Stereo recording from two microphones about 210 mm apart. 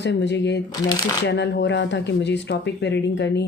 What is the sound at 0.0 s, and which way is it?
Speech, 55° left (ahead or behind).